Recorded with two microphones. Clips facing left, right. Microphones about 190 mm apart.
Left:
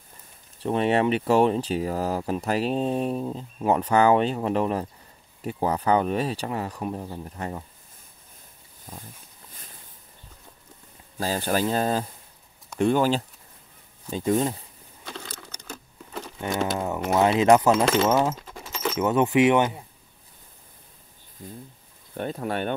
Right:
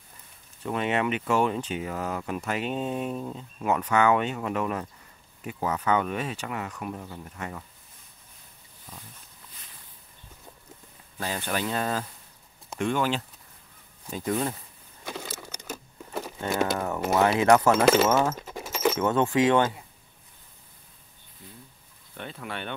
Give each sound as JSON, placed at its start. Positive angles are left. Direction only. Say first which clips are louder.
{"t": 0.6, "sound": "speech", "louder": "left 5 dB", "side_deg": 30}
{"t": 11.1, "sound": "speech", "louder": "left 5 dB", "side_deg": 35}
{"t": 15.0, "sound": "patter", "louder": "right 2 dB", "side_deg": -10}
{"t": 16.7, "sound": "speech", "louder": "left 1 dB", "side_deg": 20}
{"t": 18.3, "sound": "dog", "louder": "right 2 dB", "side_deg": -20}
{"t": 18.9, "sound": "speech", "louder": "left 5 dB", "side_deg": 20}
{"t": 21.4, "sound": "speech", "louder": "left 8 dB", "side_deg": 45}